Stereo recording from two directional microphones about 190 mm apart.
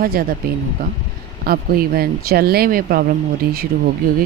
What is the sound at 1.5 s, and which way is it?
Speech, 50° right (ahead or behind).